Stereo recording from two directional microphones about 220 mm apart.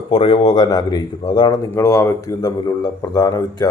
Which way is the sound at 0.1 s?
25° left (ahead or behind).